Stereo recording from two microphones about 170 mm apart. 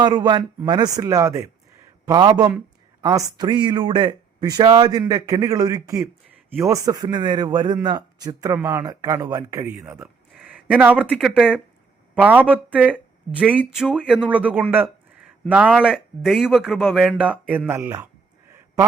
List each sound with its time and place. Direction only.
0.0 s speech: 25° right (ahead or behind)